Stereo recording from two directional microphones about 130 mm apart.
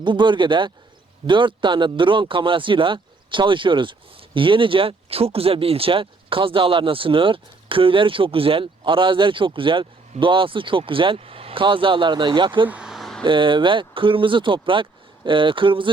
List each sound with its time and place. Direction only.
0.0 s speech: 35° right (ahead or behind)
12.6 s vehicle: 10° right (ahead or behind)
13.2 s speech: 40° right (ahead or behind)